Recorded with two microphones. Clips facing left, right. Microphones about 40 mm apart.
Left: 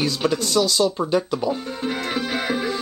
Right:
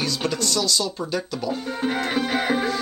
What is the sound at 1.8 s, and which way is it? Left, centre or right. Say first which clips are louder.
Music: right 1 dB; centre.